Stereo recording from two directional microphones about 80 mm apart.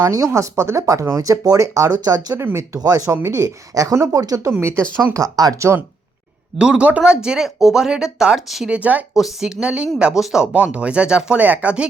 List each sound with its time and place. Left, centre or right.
0.0 s speech: right
2.3 s speech: right
2.7 s speech: right
5.5 s speech: right
6.6 s speech: centre
8.7 s speech: centre
9.1 s speech: centre